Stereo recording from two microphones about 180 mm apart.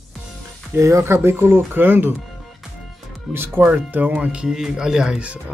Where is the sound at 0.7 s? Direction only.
15° right (ahead or behind).